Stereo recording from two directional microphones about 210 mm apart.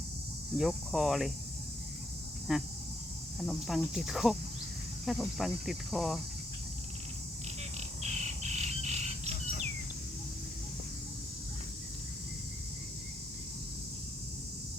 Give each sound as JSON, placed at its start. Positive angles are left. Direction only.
{"t": 0.5, "sound": "cricket", "side_deg": 0}
{"t": 2.5, "sound": "cricket", "side_deg": 0}
{"t": 8.0, "sound": "bird", "side_deg": -30}